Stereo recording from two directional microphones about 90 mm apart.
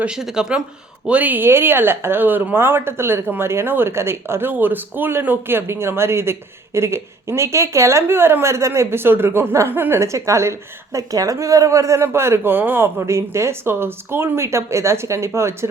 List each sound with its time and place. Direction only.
0.0 s a woman's voice: 5° right (ahead or behind); by 15.5 s 30° right (ahead or behind)